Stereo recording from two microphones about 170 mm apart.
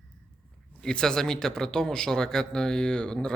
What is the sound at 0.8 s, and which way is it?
A man's voice, 5° left (ahead or behind).